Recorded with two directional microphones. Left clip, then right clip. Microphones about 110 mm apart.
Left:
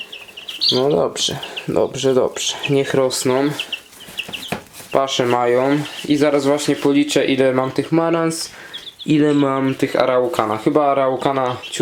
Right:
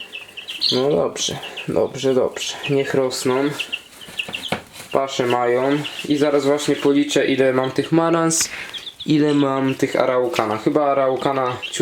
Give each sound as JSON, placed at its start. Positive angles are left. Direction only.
{"t": 0.7, "sound": "speech", "side_deg": 25}
{"t": 0.9, "sound": "speech", "side_deg": 10}
{"t": 4.9, "sound": "speech", "side_deg": 25}
{"t": 8.0, "sound": "speech", "side_deg": -15}
{"t": 9.2, "sound": "speech", "side_deg": 5}